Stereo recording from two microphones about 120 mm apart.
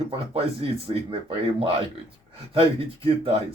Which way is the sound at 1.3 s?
45° right (ahead or behind).